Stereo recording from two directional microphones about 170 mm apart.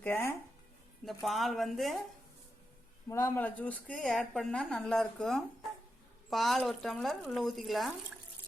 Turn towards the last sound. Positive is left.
turn(degrees=0)  # may be behind; listen again after turning